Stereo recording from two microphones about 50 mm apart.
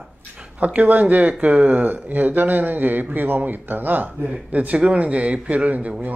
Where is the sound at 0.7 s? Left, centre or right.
Right.